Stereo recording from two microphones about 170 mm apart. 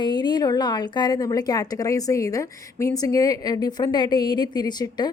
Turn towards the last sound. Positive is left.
turn(degrees=25)  # may be behind; listen again after turning